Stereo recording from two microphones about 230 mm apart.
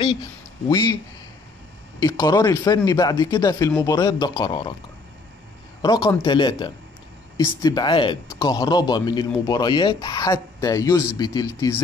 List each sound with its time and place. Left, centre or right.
0.7 s speech: centre
2.0 s speech: centre
5.8 s speech: centre